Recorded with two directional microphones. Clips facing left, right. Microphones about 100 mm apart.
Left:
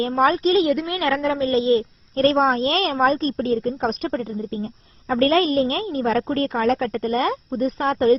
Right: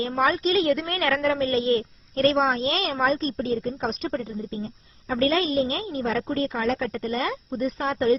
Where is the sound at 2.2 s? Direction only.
40° left (ahead or behind).